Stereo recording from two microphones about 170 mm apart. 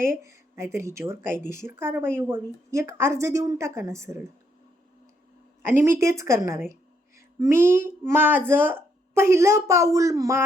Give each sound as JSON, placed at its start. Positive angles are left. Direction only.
{"t": 0.0, "sound": "a child's voice", "side_deg": -15}
{"t": 5.6, "sound": "a child's voice", "side_deg": -15}